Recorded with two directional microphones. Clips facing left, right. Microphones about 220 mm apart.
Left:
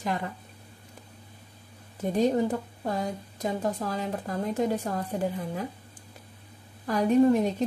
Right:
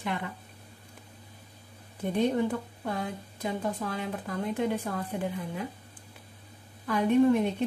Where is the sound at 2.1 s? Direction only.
40° left (ahead or behind).